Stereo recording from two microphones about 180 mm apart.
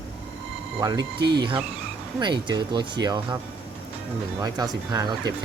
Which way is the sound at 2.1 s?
25° right (ahead or behind).